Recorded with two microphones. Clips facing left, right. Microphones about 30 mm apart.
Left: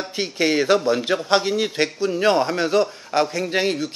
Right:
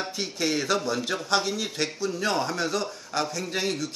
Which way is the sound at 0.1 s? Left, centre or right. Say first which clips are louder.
Left 11 dB; left.